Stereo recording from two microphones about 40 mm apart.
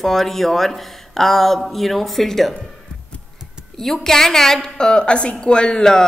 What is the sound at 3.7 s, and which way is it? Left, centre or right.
A woman's voice, centre.